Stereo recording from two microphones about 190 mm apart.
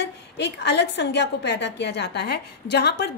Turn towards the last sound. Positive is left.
turn(degrees=60)  # may be behind; listen again after turning